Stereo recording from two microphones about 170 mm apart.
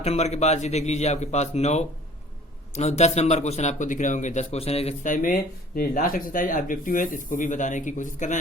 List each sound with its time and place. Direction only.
0.0 s a man's voice: 40° left (ahead or behind)